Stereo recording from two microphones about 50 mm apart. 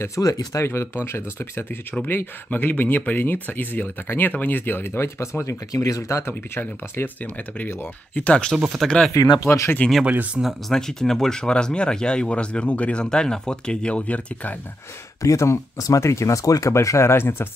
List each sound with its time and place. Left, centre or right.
0.0 s speech: left
5.2 s speech: left
6.2 s speech: left
7.2 s speech: left
8.5 s speech: centre
8.8 s speech: centre
9.1 s speech: left
9.8 s speech: left
10.4 s speech: right
10.7 s speech: centre; by 14.6 s left
15.2 s speech: left